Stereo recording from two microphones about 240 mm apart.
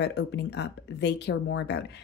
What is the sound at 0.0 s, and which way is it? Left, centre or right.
Speech, left.